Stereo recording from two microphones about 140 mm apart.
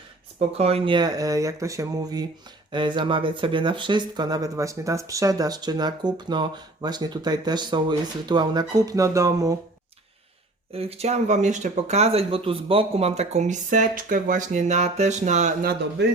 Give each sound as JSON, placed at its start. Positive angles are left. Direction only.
{"t": 0.3, "sound": "speech", "side_deg": -45}
{"t": 0.9, "sound": "speech", "side_deg": -25}
{"t": 10.7, "sound": "speech", "side_deg": -45}